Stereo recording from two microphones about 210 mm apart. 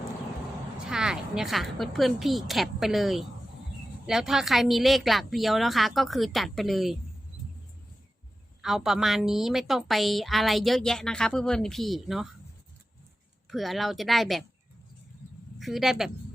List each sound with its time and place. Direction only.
0.9 s a woman's voice: 5° right (ahead or behind)
8.6 s a woman's voice: centre (ahead or behind)
13.5 s a woman's voice: centre (ahead or behind)
15.5 s a woman's voice: centre (ahead or behind)